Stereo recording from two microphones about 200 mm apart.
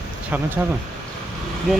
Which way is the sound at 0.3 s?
10° right (ahead or behind).